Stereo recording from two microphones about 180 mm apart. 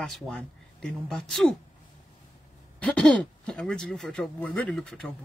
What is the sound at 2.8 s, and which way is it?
Speech, 5° left (ahead or behind).